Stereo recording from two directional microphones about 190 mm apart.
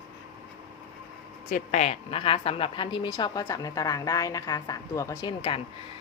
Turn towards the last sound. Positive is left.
turn(degrees=25)  # may be behind; listen again after turning